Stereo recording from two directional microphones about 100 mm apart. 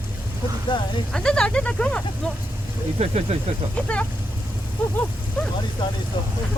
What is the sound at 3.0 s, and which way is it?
Speech, 90° right.